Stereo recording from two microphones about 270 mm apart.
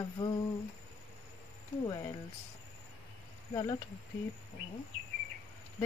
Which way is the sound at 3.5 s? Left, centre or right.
Centre.